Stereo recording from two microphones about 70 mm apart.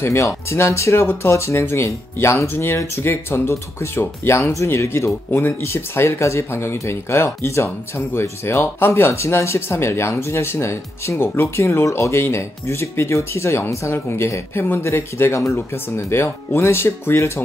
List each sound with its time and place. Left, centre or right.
0.0 s speech: left